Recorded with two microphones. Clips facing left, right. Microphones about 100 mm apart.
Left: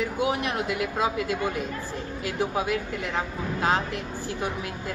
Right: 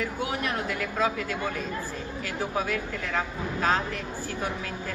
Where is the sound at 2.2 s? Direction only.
20° left (ahead or behind).